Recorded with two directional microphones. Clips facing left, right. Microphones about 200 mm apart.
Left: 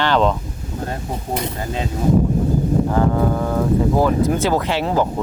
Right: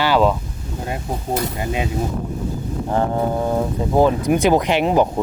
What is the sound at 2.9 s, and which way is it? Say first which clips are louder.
Speech: left 2 dB; 25° right (ahead or behind).